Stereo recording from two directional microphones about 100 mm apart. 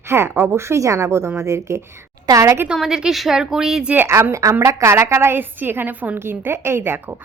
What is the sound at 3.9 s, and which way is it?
A woman's voice, 25° right (ahead or behind).